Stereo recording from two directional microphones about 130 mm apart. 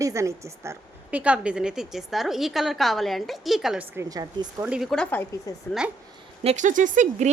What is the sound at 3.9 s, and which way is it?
Speech, 25° right (ahead or behind).